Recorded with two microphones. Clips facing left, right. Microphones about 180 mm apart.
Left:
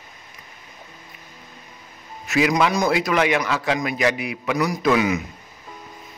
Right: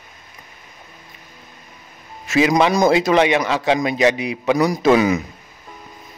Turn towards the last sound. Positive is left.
turn(degrees=-35)  # may be behind; listen again after turning